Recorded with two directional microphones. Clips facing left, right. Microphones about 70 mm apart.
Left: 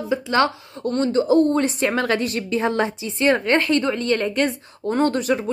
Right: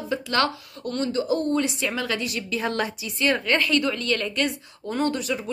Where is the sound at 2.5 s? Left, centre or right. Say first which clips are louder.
Left 5 dB; left.